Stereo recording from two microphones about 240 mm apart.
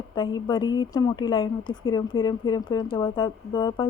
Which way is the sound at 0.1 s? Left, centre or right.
Centre.